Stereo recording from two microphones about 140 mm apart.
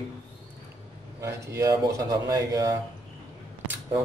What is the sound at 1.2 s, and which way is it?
Speech, 20° right (ahead or behind).